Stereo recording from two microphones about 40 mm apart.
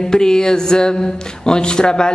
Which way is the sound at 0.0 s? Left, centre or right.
Centre.